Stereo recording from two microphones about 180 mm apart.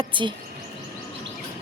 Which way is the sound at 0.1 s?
25° right (ahead or behind).